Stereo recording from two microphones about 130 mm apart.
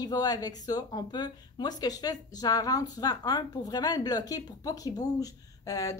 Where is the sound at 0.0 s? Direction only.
30° left (ahead or behind).